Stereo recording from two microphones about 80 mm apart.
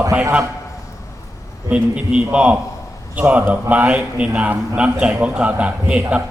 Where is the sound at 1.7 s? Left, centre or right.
Centre.